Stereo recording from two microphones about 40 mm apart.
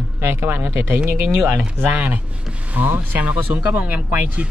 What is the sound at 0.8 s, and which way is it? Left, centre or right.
Speech, right.